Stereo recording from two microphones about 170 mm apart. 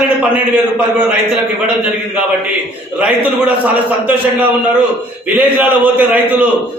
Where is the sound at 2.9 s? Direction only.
10° right (ahead or behind).